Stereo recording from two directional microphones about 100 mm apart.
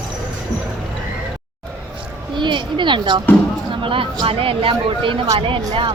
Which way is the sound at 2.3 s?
50° right (ahead or behind).